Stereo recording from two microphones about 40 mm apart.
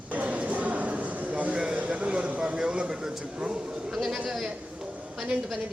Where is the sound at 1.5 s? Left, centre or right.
Right.